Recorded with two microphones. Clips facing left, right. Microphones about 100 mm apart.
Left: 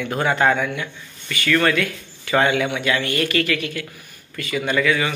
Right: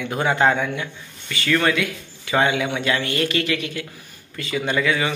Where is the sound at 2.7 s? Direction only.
30° right (ahead or behind).